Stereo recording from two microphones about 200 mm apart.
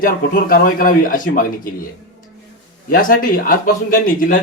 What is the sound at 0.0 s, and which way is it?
Speech, 45° left (ahead or behind).